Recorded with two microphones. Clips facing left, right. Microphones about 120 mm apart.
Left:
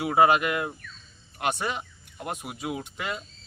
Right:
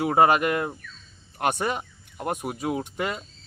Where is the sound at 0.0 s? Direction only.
40° right (ahead or behind).